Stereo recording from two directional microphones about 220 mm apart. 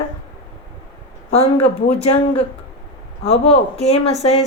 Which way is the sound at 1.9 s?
25° left (ahead or behind).